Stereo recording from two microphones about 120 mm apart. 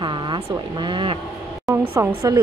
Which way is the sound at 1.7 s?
25° right (ahead or behind).